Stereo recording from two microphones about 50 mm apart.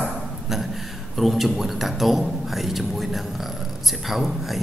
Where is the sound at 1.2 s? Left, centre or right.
Centre.